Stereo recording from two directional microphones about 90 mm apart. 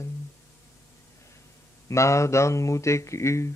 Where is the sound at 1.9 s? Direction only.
35° left (ahead or behind).